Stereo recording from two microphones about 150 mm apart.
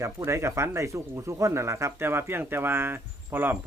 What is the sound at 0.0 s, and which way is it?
Speech, 20° right (ahead or behind).